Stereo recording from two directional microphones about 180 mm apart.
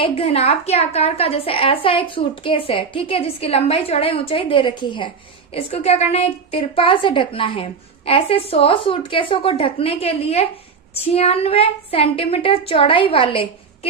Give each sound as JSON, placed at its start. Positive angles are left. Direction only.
{"t": 0.0, "sound": "a woman's voice", "side_deg": 30}